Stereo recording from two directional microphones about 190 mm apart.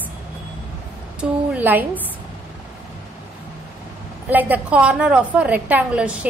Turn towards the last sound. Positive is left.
turn(degrees=-5)  # may be behind; listen again after turning